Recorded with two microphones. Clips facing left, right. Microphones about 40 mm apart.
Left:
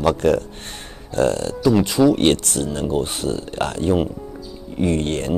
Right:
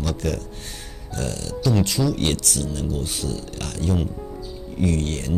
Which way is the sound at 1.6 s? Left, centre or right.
Left.